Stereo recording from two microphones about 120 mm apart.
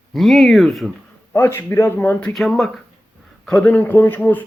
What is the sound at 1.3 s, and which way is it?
Speech, 20° left (ahead or behind).